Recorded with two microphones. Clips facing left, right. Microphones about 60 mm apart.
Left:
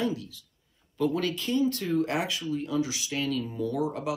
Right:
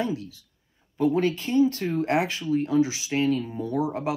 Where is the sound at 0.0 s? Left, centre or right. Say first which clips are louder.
Right 2 dB; right.